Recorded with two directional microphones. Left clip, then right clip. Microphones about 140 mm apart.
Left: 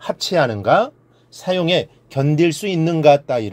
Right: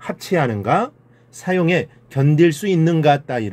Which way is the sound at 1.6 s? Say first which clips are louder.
Left 1 dB; 50° left (ahead or behind).